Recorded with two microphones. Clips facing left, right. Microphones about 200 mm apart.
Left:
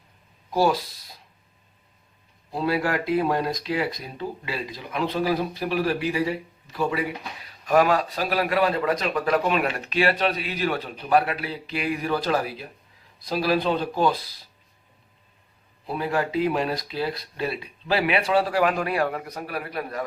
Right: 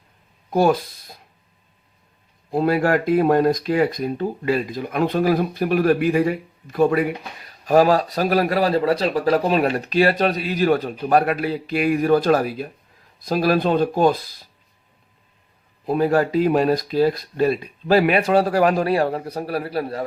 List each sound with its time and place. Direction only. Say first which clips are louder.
0.5 s speech: right 4 dB; 55° right (ahead or behind)
2.5 s speech: right 6 dB; 50° right (ahead or behind)
7.6 s a man's voice: right 4 dB; 35° right (ahead or behind)
15.9 s speech: right 8 dB; 45° right (ahead or behind)